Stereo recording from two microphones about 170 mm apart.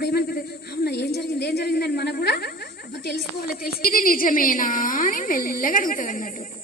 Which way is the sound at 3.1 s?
65° left (ahead or behind).